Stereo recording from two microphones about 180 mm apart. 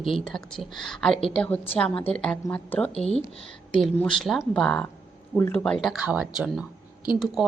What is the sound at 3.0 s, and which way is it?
Speech, 35° left (ahead or behind).